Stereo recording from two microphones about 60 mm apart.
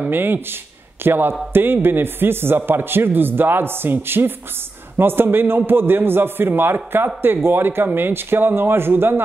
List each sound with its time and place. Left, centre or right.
0.0 s a man's voice: right